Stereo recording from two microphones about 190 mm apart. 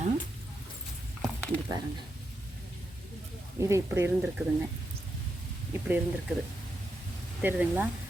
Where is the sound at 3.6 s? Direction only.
15° right (ahead or behind).